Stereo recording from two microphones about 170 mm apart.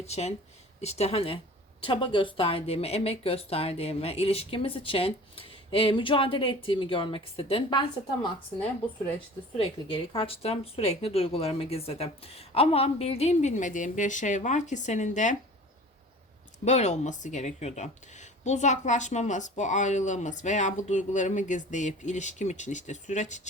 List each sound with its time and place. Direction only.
0.0 s speech: 40° left (ahead or behind)
9.6 s speech: 35° left (ahead or behind)
16.6 s speech: 40° left (ahead or behind)